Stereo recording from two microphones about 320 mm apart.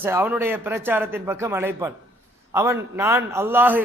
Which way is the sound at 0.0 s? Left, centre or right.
Centre.